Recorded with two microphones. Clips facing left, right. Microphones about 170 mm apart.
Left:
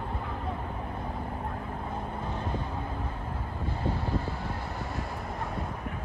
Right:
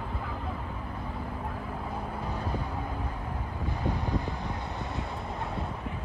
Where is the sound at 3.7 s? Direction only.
15° right (ahead or behind).